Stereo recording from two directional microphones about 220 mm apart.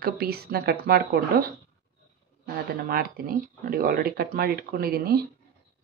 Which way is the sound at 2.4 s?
40° right (ahead or behind).